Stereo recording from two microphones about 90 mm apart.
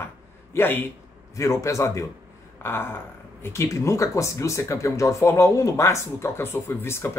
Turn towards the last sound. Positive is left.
turn(degrees=30)  # may be behind; listen again after turning